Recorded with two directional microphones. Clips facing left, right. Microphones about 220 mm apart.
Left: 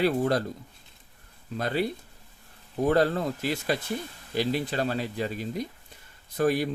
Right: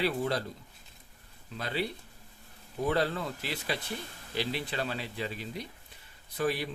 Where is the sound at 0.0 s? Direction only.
45° left (ahead or behind).